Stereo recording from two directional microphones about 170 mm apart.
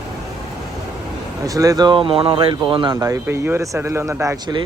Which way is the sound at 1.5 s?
20° right (ahead or behind).